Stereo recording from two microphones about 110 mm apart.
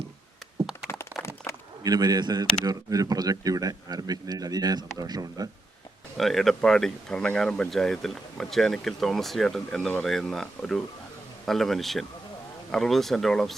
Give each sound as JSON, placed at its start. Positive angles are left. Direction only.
{"t": 0.9, "sound": "crack", "side_deg": 25}
{"t": 1.8, "sound": "speech", "side_deg": -35}
{"t": 6.1, "sound": "speech", "side_deg": 0}